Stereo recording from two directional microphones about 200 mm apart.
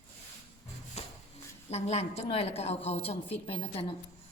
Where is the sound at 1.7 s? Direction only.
30° left (ahead or behind).